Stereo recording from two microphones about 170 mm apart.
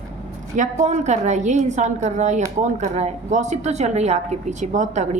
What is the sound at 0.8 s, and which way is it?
A woman's voice, 40° right (ahead or behind).